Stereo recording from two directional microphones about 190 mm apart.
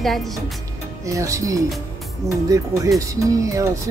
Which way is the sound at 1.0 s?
15° right (ahead or behind).